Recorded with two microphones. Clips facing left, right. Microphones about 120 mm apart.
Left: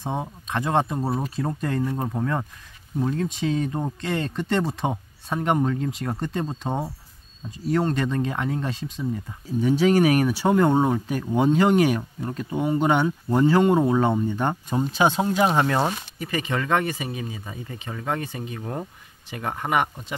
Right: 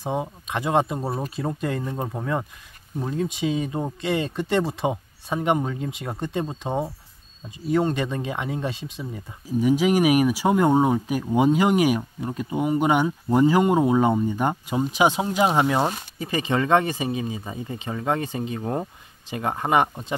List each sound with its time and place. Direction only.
0.0 s speech: 5° right (ahead or behind)
3.1 s speech: 10° right (ahead or behind)
16.2 s speech: 25° right (ahead or behind)